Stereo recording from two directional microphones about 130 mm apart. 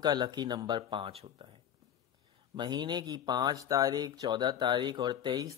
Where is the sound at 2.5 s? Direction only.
35° right (ahead or behind).